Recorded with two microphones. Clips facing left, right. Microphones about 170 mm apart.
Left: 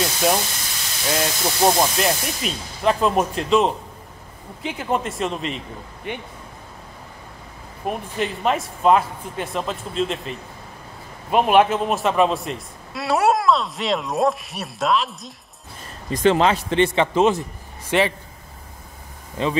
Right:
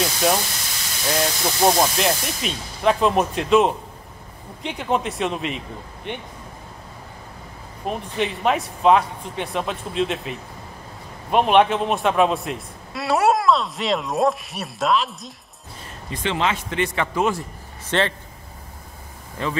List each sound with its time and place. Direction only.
0.0 s a man's voice: centre (ahead or behind)
7.8 s a man's voice: centre (ahead or behind)
16.1 s speech: 40° left (ahead or behind); by 17.4 s 20° left (ahead or behind)
17.8 s a man's voice: 10° left (ahead or behind)
19.4 s speech: 20° left (ahead or behind)